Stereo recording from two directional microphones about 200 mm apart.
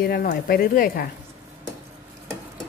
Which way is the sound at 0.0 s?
45° left (ahead or behind).